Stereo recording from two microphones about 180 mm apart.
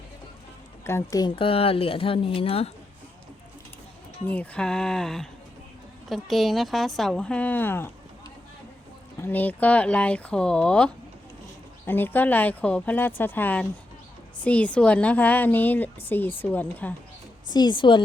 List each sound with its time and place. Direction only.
0.9 s a woman's voice: 15° left (ahead or behind); by 2.7 s 35° left (ahead or behind)
4.3 s a woman's voice: 5° left (ahead or behind)
9.1 s speech: 10° left (ahead or behind)
17.5 s speech: 25° left (ahead or behind)